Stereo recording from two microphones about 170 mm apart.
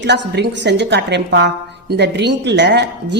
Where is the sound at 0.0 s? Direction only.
90° right.